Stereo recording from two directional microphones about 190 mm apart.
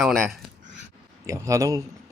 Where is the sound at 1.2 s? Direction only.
15° right (ahead or behind).